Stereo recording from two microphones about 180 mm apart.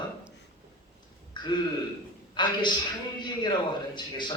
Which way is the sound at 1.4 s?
25° left (ahead or behind).